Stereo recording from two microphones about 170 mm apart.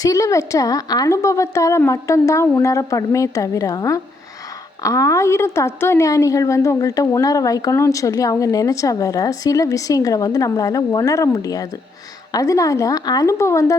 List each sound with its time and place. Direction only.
0.0 s a woman's voice: 20° left (ahead or behind)